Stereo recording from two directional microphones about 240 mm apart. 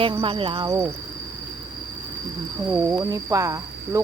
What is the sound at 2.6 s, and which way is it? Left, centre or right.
Speech, centre.